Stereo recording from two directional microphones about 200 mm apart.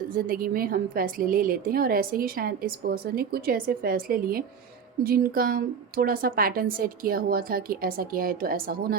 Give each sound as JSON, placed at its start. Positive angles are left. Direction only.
{"t": 0.1, "sound": "a woman's voice", "side_deg": -45}